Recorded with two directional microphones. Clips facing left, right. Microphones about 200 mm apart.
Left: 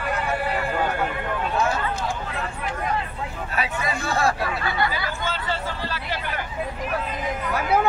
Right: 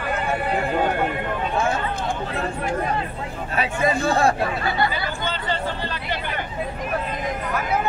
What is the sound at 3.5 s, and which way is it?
Speech, 30° right (ahead or behind).